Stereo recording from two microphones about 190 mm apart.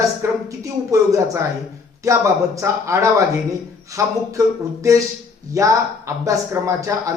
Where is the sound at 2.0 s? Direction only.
15° right (ahead or behind).